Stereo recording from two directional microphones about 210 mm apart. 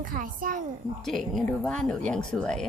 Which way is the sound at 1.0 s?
Centre (ahead or behind).